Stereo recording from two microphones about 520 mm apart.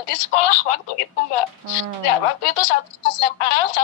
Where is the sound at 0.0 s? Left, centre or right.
Left.